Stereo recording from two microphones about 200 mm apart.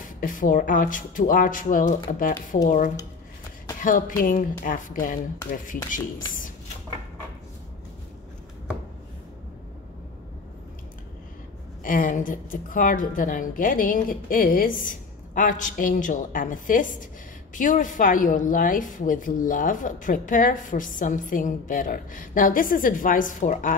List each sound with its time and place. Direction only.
0.2 s a woman's voice: 40° left (ahead or behind)
3.8 s a woman's voice: 40° left (ahead or behind)
11.8 s a woman's voice: 45° left (ahead or behind)